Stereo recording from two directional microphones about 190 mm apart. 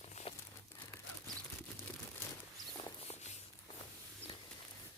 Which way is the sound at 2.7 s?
25° left (ahead or behind).